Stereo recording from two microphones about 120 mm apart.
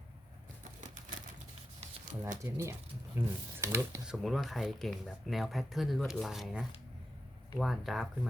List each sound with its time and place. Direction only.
2.4 s speech: 25° right (ahead or behind)
4.0 s speech: 5° right (ahead or behind)